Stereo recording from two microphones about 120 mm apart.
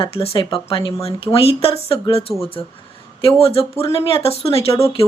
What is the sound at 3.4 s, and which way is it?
Speech, 55° left (ahead or behind).